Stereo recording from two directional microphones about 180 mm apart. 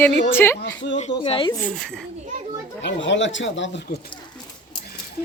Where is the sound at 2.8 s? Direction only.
90° left; by 4.0 s 70° left (ahead or behind).